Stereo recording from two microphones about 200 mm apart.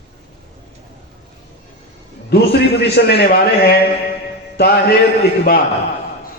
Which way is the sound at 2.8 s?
55° left (ahead or behind).